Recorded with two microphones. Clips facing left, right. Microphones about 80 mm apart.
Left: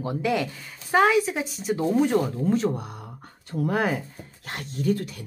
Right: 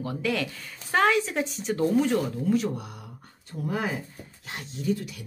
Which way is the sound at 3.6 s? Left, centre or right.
Left.